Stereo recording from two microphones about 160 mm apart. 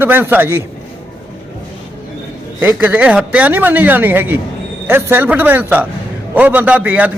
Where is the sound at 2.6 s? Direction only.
10° right (ahead or behind).